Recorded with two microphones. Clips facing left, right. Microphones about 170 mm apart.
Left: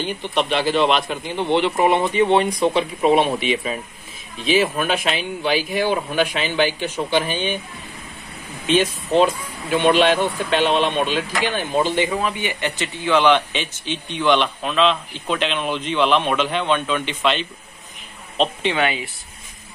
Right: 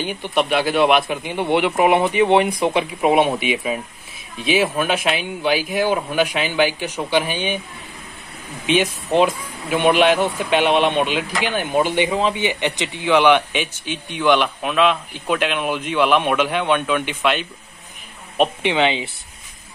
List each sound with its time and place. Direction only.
0.0 s speech: 10° right (ahead or behind)
8.6 s speech: 10° right (ahead or behind)